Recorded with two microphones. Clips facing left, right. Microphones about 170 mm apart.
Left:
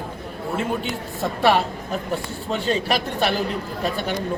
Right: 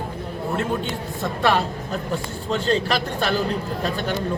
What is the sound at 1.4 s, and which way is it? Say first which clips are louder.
Speech: left 2 dB; 10° left (ahead or behind).